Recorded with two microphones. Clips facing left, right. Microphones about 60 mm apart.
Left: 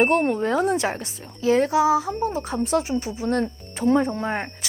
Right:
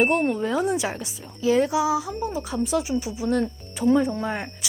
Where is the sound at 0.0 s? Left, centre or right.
Left.